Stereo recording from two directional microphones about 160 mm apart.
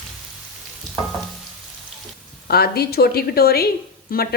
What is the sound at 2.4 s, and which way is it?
Speech, 75° left (ahead or behind).